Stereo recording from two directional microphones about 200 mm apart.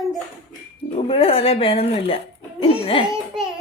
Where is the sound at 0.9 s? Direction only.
30° left (ahead or behind).